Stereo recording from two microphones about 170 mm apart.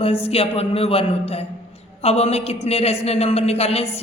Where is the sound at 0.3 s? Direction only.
35° left (ahead or behind).